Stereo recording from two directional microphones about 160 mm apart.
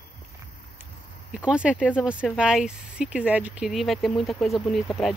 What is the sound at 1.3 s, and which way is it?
Speech, 5° right (ahead or behind).